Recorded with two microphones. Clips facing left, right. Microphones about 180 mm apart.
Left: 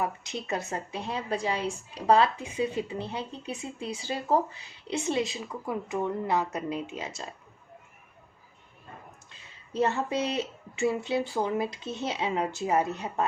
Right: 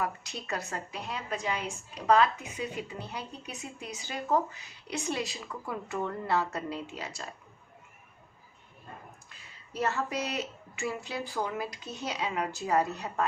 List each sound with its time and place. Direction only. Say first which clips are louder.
0.0 s a woman's voice: left 3 dB; 20° left (ahead or behind)
9.7 s a woman's voice: left 4 dB; 25° left (ahead or behind)